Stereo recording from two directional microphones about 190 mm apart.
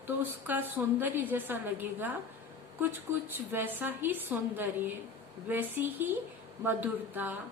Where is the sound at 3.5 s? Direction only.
10° right (ahead or behind).